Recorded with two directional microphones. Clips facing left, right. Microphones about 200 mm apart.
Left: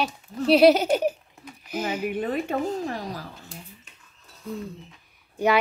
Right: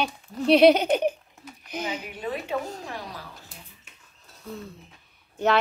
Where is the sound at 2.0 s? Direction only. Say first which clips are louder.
Left 6 dB; 50° left (ahead or behind).